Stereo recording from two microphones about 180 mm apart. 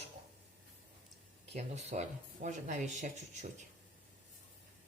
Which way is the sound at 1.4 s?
40° right (ahead or behind).